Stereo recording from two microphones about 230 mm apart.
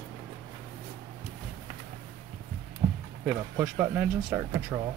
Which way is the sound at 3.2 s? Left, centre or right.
Centre.